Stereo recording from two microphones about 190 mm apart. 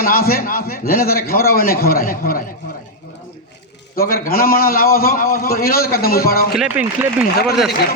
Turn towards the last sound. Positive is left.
turn(degrees=-5)  # may be behind; listen again after turning